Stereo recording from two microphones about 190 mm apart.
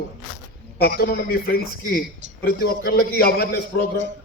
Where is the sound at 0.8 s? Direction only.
50° left (ahead or behind).